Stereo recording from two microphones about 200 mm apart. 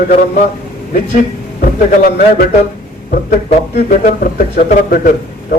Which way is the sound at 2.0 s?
45° left (ahead or behind).